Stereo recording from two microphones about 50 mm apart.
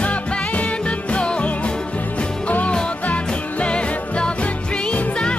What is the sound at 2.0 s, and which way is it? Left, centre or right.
Music, left.